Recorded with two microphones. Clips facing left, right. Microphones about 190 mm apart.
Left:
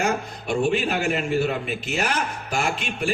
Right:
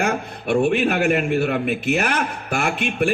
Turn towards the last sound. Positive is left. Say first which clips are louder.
# right 5 dB
turn(degrees=-60)  # may be behind; listen again after turning